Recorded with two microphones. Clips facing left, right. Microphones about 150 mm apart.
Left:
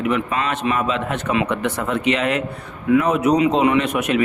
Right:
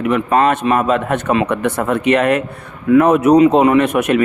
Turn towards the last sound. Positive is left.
turn(degrees=-50)  # may be behind; listen again after turning